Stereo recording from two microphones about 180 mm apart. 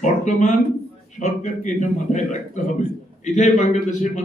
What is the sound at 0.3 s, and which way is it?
A man's voice, 40° left (ahead or behind).